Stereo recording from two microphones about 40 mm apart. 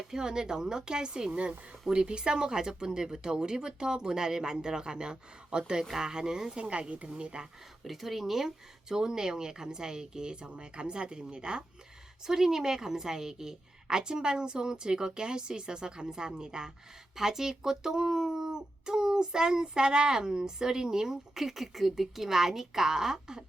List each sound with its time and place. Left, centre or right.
0.1 s a woman's voice: centre
6.6 s a woman's voice: right
7.9 s a woman's voice: centre